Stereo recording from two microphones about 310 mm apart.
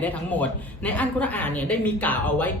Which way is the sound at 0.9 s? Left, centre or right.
Centre.